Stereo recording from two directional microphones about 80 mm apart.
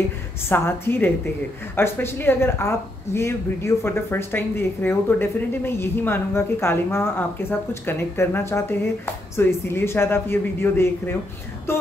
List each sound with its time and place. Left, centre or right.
0.5 s speech: left
11.7 s music: left